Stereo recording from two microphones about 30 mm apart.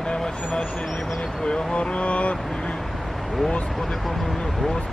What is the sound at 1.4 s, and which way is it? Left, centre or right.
Speech, left.